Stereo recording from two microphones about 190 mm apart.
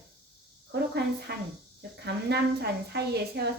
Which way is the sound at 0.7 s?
60° right (ahead or behind).